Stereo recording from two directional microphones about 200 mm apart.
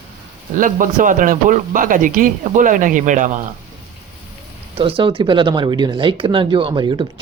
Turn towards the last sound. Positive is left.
turn(degrees=-20)  # may be behind; listen again after turning